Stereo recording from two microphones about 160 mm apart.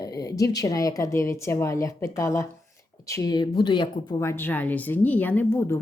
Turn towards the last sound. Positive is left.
turn(degrees=15)  # may be behind; listen again after turning